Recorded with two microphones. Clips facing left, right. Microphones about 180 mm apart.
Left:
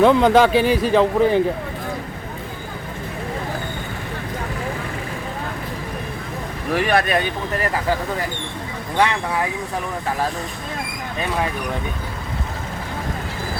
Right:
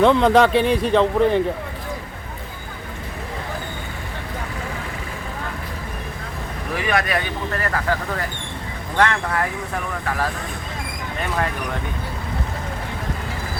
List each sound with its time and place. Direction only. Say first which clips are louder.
0.0 s speech: left 1 dB; 5° left (ahead or behind)
6.8 s speech: left 2 dB; 30° left (ahead or behind)
7.6 s speech: left 2 dB; 15° left (ahead or behind)
9.0 s speech: even; 10° left (ahead or behind)